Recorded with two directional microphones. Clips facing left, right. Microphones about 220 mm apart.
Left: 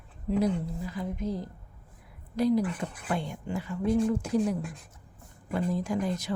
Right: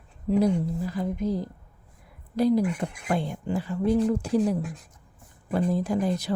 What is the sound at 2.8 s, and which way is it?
Speech, 10° right (ahead or behind).